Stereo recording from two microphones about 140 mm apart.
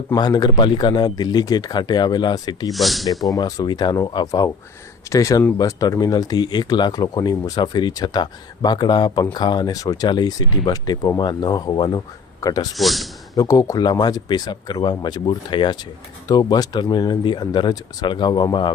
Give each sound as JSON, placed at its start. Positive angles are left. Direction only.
{"t": 0.1, "sound": "speech", "side_deg": 30}
{"t": 2.7, "sound": "speech", "side_deg": 0}
{"t": 3.3, "sound": "speech", "side_deg": 30}
{"t": 12.7, "sound": "speech", "side_deg": 0}
{"t": 13.3, "sound": "speech", "side_deg": 25}